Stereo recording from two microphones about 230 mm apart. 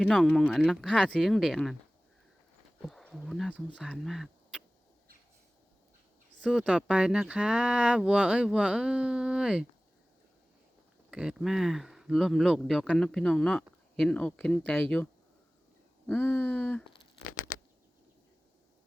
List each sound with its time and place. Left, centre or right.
0.0 s speech: centre
2.8 s speech: centre
6.4 s speech: centre
11.1 s speech: centre
16.0 s speech: centre
17.3 s a sound: left